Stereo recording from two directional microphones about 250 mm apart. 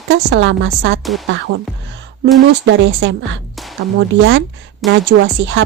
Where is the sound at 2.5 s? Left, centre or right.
Right.